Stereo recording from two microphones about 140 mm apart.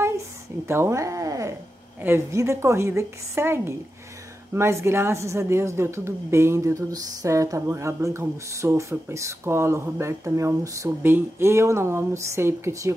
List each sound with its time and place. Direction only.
0.7 s a woman's voice: 20° right (ahead or behind)